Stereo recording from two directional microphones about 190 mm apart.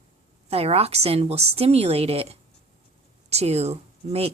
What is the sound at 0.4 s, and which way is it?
Speech, 30° right (ahead or behind).